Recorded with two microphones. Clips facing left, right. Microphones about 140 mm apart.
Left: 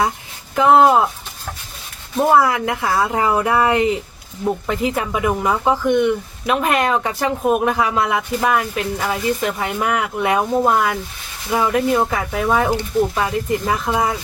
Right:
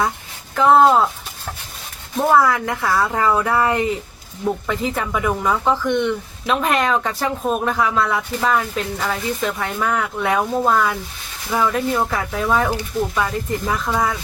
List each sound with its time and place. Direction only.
0.5 s speech: 15° left (ahead or behind)
2.2 s speech: 15° left (ahead or behind)